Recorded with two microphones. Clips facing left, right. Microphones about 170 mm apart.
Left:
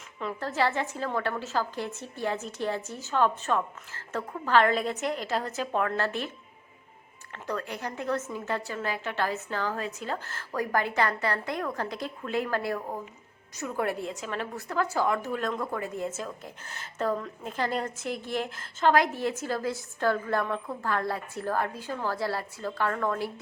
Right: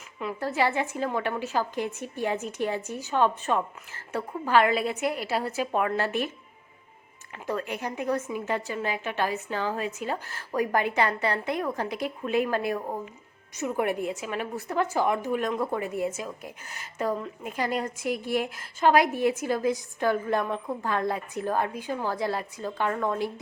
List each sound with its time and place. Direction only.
0.2 s a woman's voice: 10° right (ahead or behind)
7.3 s a woman's voice: 15° right (ahead or behind)